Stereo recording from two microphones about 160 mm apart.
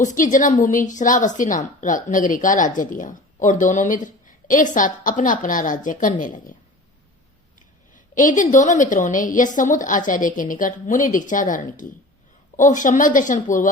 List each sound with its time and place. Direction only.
0.0 s a woman's voice: 55° left (ahead or behind)
7.9 s a woman's voice: 55° left (ahead or behind)